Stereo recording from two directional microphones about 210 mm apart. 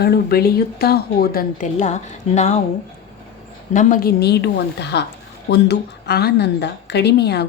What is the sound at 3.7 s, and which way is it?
A woman's voice, 35° left (ahead or behind).